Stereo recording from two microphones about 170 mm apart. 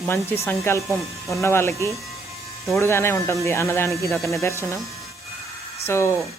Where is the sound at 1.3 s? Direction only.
15° left (ahead or behind).